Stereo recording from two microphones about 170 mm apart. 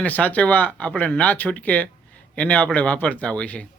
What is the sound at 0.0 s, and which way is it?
Speech, 10° left (ahead or behind).